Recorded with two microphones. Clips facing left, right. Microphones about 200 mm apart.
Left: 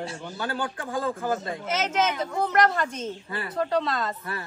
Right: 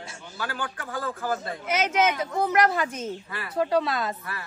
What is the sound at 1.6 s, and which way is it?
Speech, 10° right (ahead or behind).